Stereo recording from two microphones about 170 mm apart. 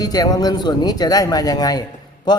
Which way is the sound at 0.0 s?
20° left (ahead or behind).